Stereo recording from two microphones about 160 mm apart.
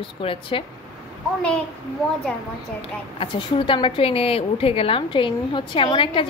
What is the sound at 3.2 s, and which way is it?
A woman's voice, 30° left (ahead or behind).